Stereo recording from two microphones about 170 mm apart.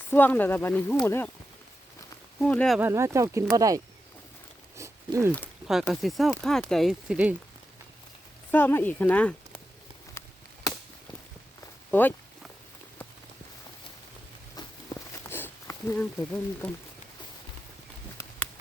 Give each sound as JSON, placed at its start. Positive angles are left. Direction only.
{"t": 0.1, "sound": "speech", "side_deg": 10}
{"t": 2.4, "sound": "speech", "side_deg": 5}
{"t": 2.7, "sound": "speech", "side_deg": -15}
{"t": 4.8, "sound": "a sound", "side_deg": -15}
{"t": 5.9, "sound": "speech", "side_deg": 0}
{"t": 8.4, "sound": "speech", "side_deg": 10}
{"t": 10.2, "sound": "a sound", "side_deg": 15}
{"t": 11.9, "sound": "speech", "side_deg": 10}
{"t": 14.5, "sound": "a sound", "side_deg": 20}